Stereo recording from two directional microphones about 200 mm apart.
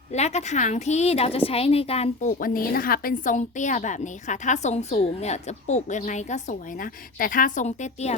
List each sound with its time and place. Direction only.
0.1 s a woman's voice: 35° left (ahead or behind)
2.4 s a woman's voice: 45° left (ahead or behind)